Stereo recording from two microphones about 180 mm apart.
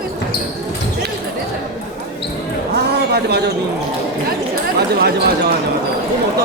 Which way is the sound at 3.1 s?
65° right (ahead or behind).